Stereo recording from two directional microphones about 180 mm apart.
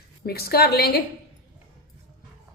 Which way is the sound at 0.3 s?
60° left (ahead or behind).